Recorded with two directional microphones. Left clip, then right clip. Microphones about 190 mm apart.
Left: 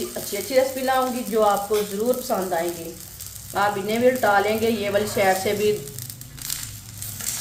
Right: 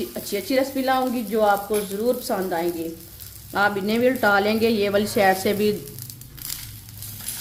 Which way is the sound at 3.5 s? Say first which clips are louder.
Right 1 dB; 55° right (ahead or behind).